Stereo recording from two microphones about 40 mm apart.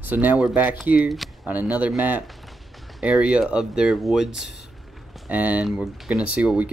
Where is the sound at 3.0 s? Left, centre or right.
Right.